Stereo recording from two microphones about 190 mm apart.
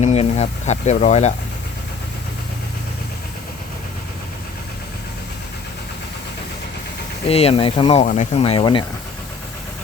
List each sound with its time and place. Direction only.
0.0 s speech: 35° left (ahead or behind)
7.3 s speech: 30° left (ahead or behind)